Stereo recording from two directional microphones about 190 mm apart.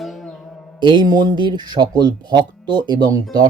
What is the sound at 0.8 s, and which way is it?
Speech, 25° right (ahead or behind).